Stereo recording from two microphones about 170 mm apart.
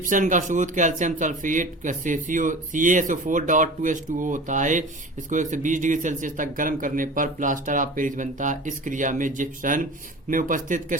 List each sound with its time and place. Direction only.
0.0 s speech: 50° right (ahead or behind)